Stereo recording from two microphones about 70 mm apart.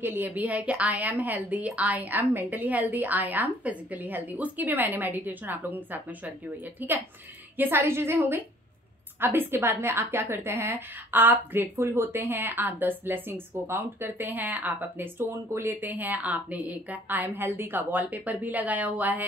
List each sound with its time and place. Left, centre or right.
0.0 s a woman's voice: right